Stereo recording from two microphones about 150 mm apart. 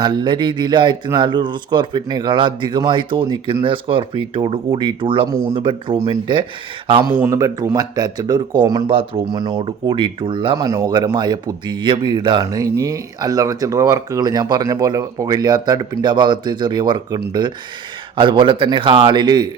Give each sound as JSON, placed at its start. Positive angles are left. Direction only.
{"t": 0.0, "sound": "speech", "side_deg": -30}
{"t": 7.0, "sound": "speech", "side_deg": -15}
{"t": 10.7, "sound": "speech", "side_deg": -25}